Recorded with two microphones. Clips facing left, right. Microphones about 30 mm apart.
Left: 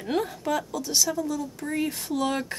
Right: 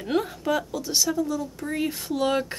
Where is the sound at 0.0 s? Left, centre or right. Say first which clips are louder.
Right 2 dB; centre.